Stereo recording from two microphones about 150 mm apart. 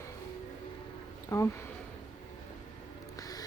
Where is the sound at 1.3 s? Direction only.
20° left (ahead or behind).